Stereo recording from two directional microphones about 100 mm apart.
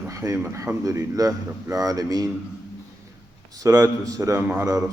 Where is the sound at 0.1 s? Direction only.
35° right (ahead or behind).